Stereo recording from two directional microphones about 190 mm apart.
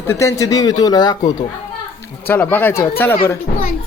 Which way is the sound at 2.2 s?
10° left (ahead or behind).